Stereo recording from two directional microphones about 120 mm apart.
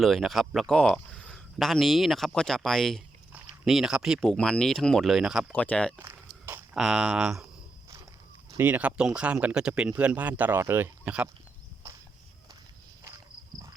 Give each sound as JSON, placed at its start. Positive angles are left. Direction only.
{"t": 0.0, "sound": "speech", "side_deg": 0}
{"t": 5.5, "sound": "speech", "side_deg": 10}
{"t": 6.0, "sound": "walk", "side_deg": -20}
{"t": 6.7, "sound": "speech", "side_deg": -5}
{"t": 8.5, "sound": "speech", "side_deg": -15}